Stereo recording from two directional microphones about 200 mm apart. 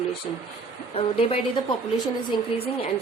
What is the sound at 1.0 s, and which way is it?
Speech, 30° left (ahead or behind).